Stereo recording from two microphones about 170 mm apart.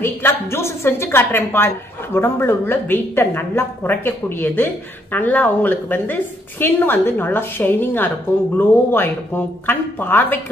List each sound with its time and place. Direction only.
0.0 s a woman's voice: 15° left (ahead or behind)